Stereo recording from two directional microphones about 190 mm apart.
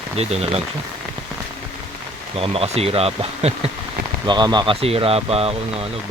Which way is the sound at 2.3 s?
30° right (ahead or behind).